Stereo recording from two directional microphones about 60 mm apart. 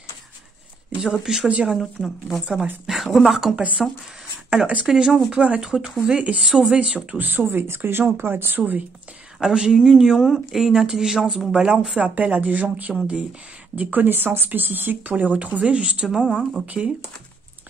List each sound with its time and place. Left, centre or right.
1.2 s speech: centre
1.5 s speech: centre
1.8 s speech: centre
2.4 s speech: centre
2.9 s speech: centre
3.5 s speech: centre
6.4 s speech: centre
7.2 s speech: right
9.4 s speech: centre
12.2 s speech: right